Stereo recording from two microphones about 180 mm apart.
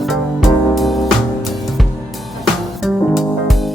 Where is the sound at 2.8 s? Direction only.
Centre (ahead or behind).